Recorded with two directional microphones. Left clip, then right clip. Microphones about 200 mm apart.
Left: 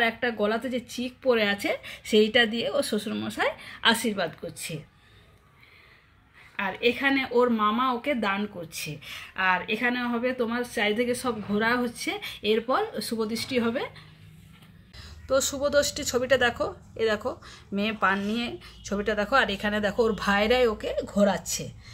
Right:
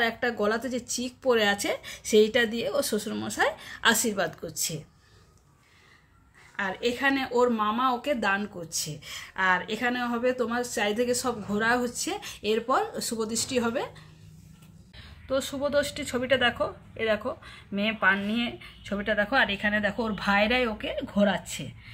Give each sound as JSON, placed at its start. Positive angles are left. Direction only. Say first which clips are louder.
{"t": 0.0, "sound": "speech", "louder": "left 1 dB", "side_deg": -15}
{"t": 6.6, "sound": "speech", "louder": "left 2 dB", "side_deg": 0}
{"t": 15.0, "sound": "speech", "louder": "left 4 dB", "side_deg": 20}